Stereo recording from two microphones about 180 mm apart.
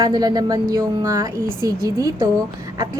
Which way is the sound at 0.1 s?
20° right (ahead or behind).